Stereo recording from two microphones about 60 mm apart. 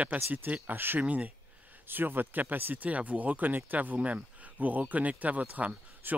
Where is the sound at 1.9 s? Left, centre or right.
Right.